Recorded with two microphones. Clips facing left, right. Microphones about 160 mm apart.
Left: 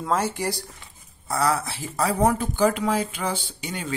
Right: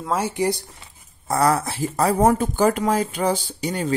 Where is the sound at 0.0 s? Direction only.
5° right (ahead or behind).